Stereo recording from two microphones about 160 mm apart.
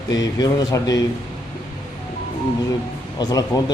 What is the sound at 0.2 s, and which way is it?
Speech, 25° left (ahead or behind).